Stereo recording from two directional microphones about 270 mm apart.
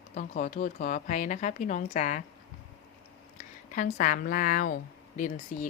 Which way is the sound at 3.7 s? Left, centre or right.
Left.